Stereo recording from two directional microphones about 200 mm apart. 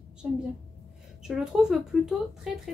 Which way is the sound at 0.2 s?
5° right (ahead or behind).